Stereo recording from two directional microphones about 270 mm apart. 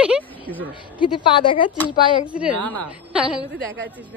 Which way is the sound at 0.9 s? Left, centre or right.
Centre.